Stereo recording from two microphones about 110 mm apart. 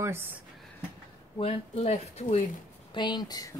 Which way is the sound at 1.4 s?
55° left (ahead or behind).